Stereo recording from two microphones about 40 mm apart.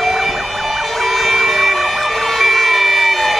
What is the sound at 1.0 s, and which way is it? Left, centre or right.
Emergency vehicle, centre.